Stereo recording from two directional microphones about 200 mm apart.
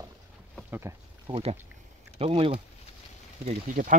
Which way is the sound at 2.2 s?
25° right (ahead or behind).